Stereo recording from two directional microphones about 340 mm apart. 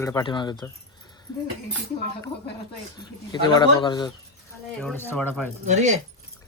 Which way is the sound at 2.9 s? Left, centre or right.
Centre.